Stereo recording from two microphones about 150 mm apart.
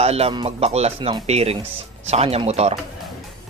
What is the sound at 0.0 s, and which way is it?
A man's voice, 40° right (ahead or behind).